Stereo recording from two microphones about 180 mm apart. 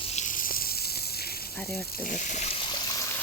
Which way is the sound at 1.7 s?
60° left (ahead or behind).